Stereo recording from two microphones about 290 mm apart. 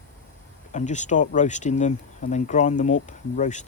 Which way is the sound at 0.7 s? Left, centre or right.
Left.